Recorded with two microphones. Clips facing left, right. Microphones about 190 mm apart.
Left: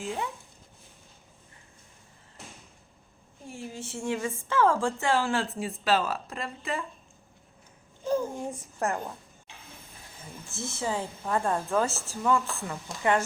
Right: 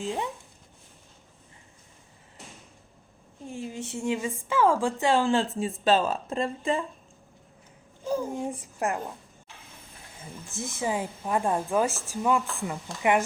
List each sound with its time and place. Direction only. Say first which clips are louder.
0.0 s speech: right 2 dB; 20° right (ahead or behind)
3.5 s a woman's voice: right 3 dB; 20° right (ahead or behind)
8.0 s a child's voice: even; 10° right (ahead or behind)
10.5 s a woman's voice: right 2 dB; 15° right (ahead or behind)